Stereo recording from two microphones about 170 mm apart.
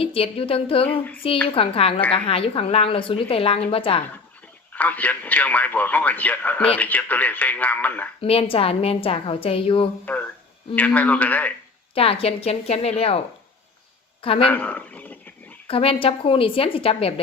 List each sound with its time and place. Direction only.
0.0 s a woman's voice: 35° left (ahead or behind)
0.9 s a man's voice: 10° left (ahead or behind)
1.5 s a woman's voice: 35° left (ahead or behind)
4.7 s a man's voice: 10° left (ahead or behind)
8.2 s a woman's voice: 35° left (ahead or behind)
10.8 s a man's voice: 10° left (ahead or behind)
11.9 s a woman's voice: 35° left (ahead or behind)
14.4 s speech: 10° left (ahead or behind)
15.6 s a woman's voice: 35° left (ahead or behind)